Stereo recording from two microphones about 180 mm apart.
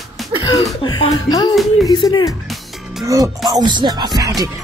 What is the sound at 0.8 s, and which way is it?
Speech, 25° left (ahead or behind).